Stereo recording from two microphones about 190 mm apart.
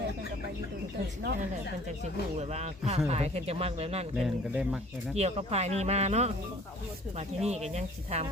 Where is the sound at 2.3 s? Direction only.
35° right (ahead or behind).